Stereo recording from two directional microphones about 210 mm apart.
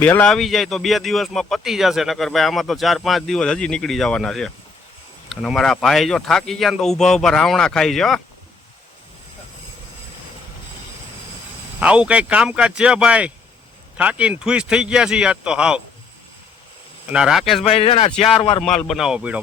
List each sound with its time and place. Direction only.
0.0 s speech: 5° left (ahead or behind)
11.8 s speech: 5° right (ahead or behind)
17.1 s speech: 5° right (ahead or behind)
17.7 s speech: 30° left (ahead or behind)
18.6 s speech: centre (ahead or behind)